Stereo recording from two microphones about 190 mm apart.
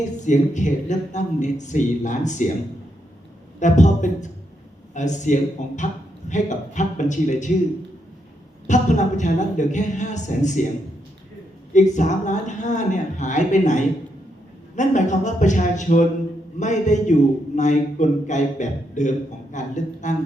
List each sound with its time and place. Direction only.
0.3 s a man's voice: 40° left (ahead or behind)
3.6 s a man's voice: 40° left (ahead or behind)
8.6 s a man's voice: 40° left (ahead or behind)
11.7 s a man's voice: 40° left (ahead or behind)